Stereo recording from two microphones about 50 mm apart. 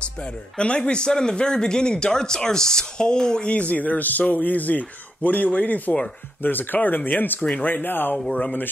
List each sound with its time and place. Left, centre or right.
0.0 s speech: left
3.5 s speech: left